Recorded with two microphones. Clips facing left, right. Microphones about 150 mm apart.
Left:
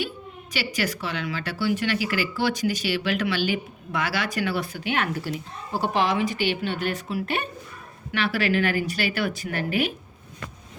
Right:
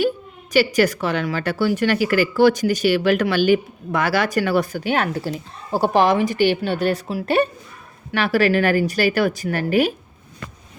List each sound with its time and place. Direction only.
0.5 s speech: 45° right (ahead or behind)